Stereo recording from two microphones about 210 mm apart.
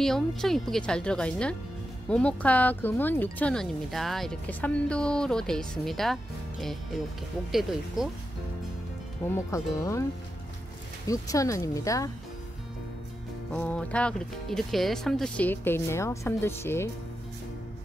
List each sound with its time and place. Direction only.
0.0 s speech: centre (ahead or behind)
9.3 s speech: 15° left (ahead or behind)
11.1 s speech: 15° left (ahead or behind)
13.5 s speech: 5° left (ahead or behind)